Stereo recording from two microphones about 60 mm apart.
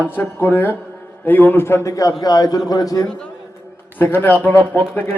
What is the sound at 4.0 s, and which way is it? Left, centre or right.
Speech, left.